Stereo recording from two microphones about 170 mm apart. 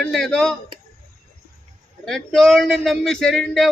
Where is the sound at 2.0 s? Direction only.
Centre (ahead or behind).